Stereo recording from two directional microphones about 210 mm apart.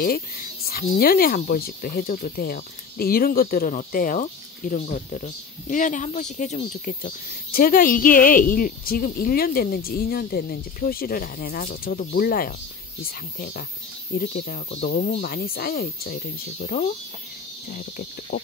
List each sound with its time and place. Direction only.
0.7 s speech: 45° left (ahead or behind)